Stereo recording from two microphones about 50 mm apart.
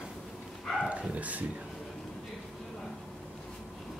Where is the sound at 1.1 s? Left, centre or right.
Right.